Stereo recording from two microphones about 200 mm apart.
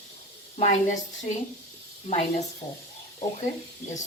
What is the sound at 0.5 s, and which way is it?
Speech, 35° left (ahead or behind).